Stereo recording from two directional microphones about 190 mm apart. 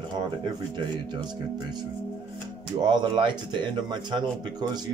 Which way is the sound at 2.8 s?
25° right (ahead or behind).